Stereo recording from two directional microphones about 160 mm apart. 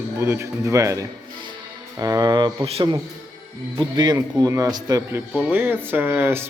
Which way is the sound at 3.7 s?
20° right (ahead or behind).